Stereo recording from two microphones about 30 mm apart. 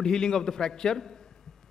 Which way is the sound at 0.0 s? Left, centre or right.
Centre.